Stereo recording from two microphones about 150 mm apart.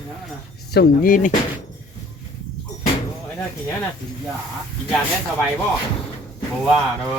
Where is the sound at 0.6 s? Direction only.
80° left.